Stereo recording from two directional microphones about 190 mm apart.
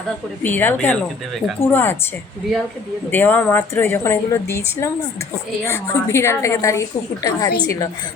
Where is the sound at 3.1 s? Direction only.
10° left (ahead or behind).